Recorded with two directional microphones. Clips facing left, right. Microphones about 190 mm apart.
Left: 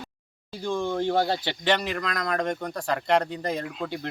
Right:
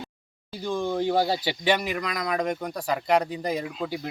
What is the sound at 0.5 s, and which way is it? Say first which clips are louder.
Speech: even; 5° right (ahead or behind).